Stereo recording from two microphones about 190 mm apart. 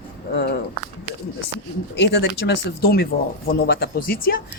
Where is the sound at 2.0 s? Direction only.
60° left (ahead or behind).